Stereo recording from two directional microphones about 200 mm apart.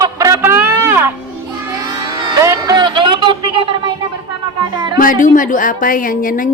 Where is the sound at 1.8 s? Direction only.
20° right (ahead or behind).